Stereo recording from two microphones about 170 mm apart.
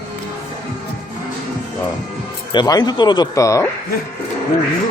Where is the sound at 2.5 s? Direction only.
25° left (ahead or behind).